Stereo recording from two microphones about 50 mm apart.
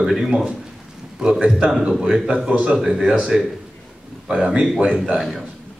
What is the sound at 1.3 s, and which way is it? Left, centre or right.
A man's voice, centre.